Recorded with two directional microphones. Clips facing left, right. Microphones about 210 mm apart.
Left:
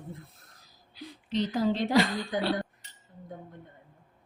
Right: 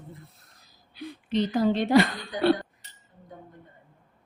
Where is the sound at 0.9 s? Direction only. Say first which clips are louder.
Right 4 dB; 60° right (ahead or behind).